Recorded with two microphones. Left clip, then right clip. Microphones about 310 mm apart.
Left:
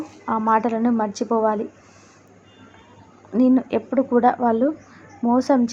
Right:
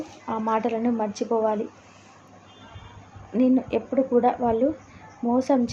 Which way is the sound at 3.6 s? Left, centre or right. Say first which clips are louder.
Left 2 dB; centre.